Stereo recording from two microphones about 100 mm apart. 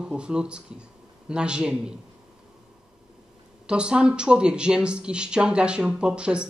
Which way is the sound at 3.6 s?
10° right (ahead or behind).